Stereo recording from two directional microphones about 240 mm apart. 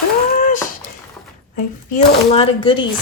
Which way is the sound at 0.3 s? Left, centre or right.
Left.